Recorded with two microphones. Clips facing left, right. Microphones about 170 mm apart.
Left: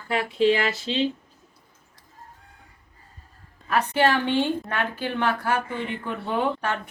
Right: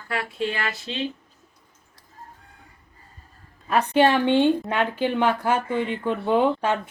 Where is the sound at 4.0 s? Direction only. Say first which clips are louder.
Right 5 dB; 15° right (ahead or behind).